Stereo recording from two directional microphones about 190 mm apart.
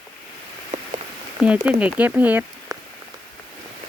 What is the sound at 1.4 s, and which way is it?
Speech, 5° right (ahead or behind).